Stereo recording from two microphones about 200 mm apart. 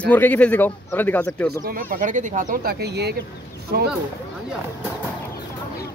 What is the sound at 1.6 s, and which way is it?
Speech, 45° right (ahead or behind).